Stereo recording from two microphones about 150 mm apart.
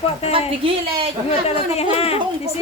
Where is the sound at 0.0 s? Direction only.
40° left (ahead or behind).